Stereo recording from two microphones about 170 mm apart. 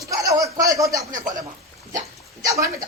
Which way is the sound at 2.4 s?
20° right (ahead or behind).